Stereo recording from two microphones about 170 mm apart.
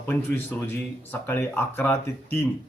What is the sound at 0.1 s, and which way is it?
Speech, 10° left (ahead or behind).